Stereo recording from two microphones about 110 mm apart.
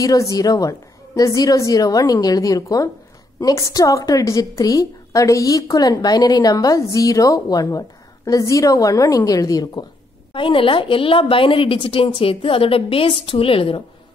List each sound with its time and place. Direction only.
0.0 s a woman's voice: 30° left (ahead or behind)
10.3 s a woman's voice: 50° left (ahead or behind)